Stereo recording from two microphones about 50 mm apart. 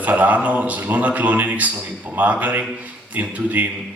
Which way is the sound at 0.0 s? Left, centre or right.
Right.